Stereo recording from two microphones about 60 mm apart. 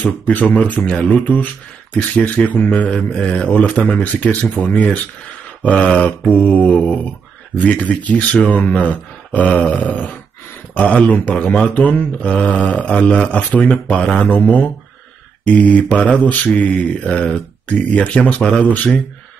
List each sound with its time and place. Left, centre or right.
0.3 s speech: left
5.6 s mantra: left
5.9 s speech: left